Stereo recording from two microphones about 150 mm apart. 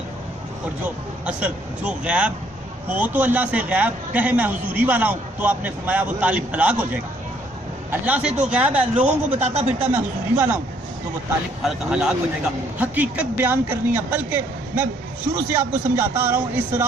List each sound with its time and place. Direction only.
1.2 s a man's voice: 10° right (ahead or behind)
9.4 s speech: 45° right (ahead or behind)
9.9 s a man's voice: 15° right (ahead or behind)
11.6 s a man's voice: 5° right (ahead or behind)